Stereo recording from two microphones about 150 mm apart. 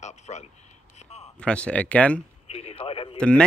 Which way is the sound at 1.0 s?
45° left (ahead or behind).